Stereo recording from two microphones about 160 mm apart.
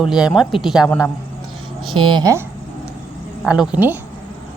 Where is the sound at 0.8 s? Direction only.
15° left (ahead or behind).